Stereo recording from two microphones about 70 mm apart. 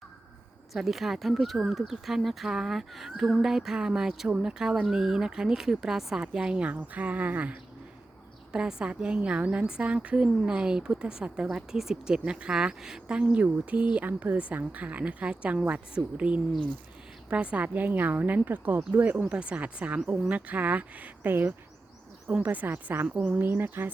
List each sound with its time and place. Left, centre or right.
0.7 s a woman's voice: centre; by 23.0 s right
23.0 s a woman's voice: centre